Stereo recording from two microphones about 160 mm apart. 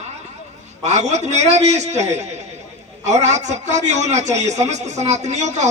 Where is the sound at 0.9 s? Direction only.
45° right (ahead or behind).